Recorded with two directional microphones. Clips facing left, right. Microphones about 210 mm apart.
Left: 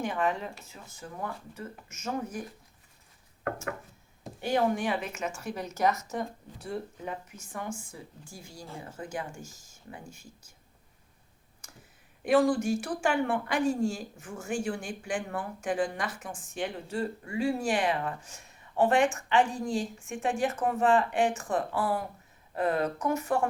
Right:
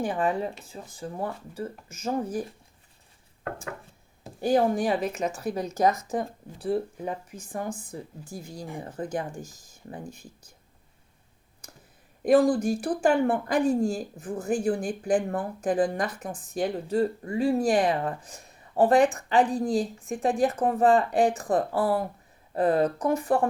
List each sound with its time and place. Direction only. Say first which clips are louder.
0.0 s speech: right 4 dB; 30° right (ahead or behind)
4.4 s speech: right 5 dB; 35° right (ahead or behind)
8.4 s speech: right 5 dB; 15° right (ahead or behind)
8.8 s speech: right 6 dB; 35° right (ahead or behind)
12.2 s speech: right 4 dB; 35° right (ahead or behind)